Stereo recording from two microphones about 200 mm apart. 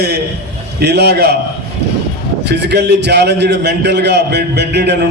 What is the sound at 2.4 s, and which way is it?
A man's voice, 55° right (ahead or behind).